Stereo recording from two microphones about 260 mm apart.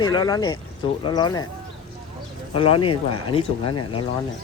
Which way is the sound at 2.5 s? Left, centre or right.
Centre.